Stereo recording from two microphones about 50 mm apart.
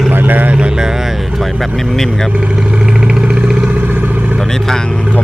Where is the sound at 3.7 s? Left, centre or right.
Right.